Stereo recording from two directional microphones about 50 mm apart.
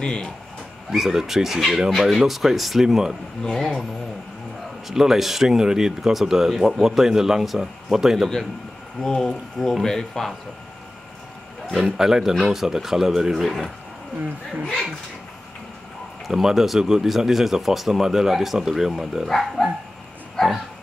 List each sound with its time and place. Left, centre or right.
0.0 s speech: centre
0.9 s speech: centre
3.4 s speech: centre
4.8 s speech: centre
9.0 s speech: centre
11.8 s speech: centre
14.6 s speech: centre
16.3 s speech: centre
20.3 s bow-wow: centre